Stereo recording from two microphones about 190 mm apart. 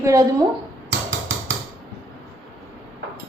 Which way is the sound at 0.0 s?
15° right (ahead or behind).